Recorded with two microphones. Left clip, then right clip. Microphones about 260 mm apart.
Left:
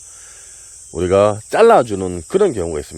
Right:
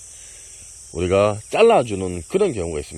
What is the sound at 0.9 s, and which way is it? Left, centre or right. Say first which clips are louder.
Speech: left 4 dB; left.